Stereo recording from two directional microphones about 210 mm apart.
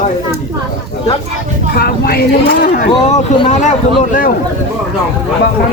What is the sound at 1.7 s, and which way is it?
Speech, 45° left (ahead or behind).